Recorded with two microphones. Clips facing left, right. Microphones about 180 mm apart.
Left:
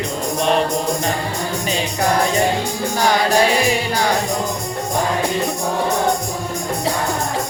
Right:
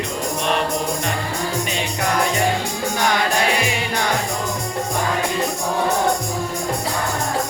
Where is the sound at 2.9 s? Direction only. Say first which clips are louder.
Left 4 dB; 35° left (ahead or behind).